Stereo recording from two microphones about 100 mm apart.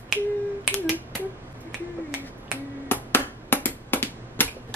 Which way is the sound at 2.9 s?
20° left (ahead or behind).